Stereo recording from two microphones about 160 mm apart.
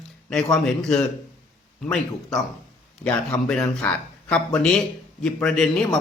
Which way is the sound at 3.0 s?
5° left (ahead or behind).